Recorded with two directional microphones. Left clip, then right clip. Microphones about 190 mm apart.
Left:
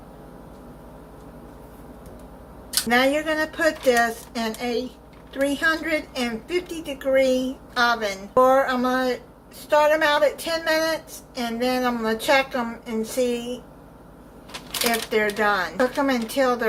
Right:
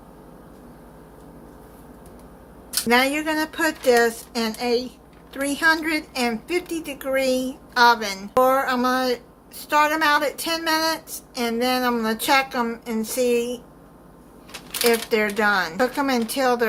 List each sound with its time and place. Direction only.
2.9 s speech: 50° right (ahead or behind)
15.1 s speech: 50° right (ahead or behind)